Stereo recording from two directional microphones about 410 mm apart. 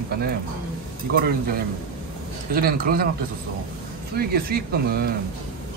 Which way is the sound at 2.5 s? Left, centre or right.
Right.